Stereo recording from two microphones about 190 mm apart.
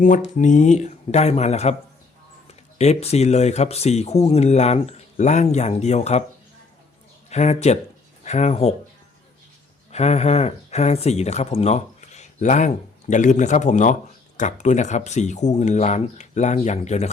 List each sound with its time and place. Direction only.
0.0 s speech: 40° left (ahead or behind)
7.3 s speech: 35° left (ahead or behind)
9.9 s speech: 35° left (ahead or behind)